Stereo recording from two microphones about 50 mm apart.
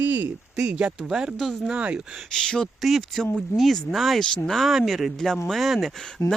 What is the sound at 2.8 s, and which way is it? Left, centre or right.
Speech, centre.